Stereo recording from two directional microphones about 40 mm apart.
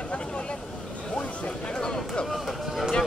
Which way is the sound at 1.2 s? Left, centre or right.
Left.